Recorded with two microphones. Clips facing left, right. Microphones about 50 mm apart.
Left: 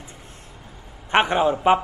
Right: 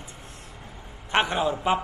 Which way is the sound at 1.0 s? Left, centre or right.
Left.